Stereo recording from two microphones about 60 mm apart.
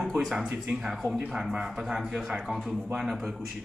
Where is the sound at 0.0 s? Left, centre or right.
Centre.